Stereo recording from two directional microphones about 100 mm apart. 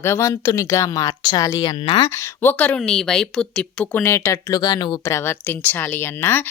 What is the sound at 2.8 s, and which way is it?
Speech, 5° left (ahead or behind).